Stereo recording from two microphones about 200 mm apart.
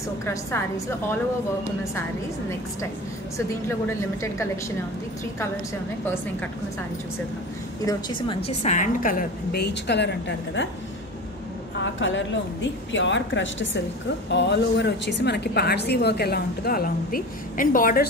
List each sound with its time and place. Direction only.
0.2 s a woman's voice: 15° left (ahead or behind)
4.2 s a woman's voice: 15° left (ahead or behind)
7.8 s a woman's voice: 25° left (ahead or behind)
8.5 s a woman's voice: 35° left (ahead or behind); by 10.7 s 60° left (ahead or behind)
11.8 s a man's voice: 65° left (ahead or behind); by 18.0 s 45° left (ahead or behind)